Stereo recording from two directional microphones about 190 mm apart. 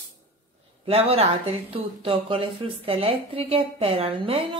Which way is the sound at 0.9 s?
30° right (ahead or behind).